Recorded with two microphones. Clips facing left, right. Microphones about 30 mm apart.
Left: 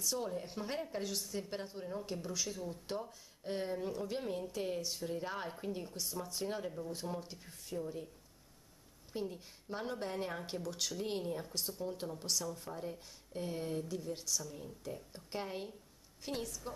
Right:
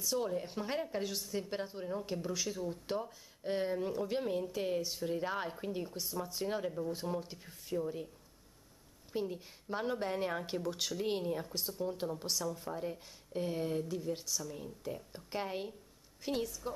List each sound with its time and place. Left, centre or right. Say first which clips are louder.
0.0 s speech: right 3 dB; centre
9.1 s speech: right 4 dB; centre